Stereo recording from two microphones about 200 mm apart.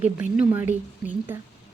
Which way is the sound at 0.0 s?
5° right (ahead or behind).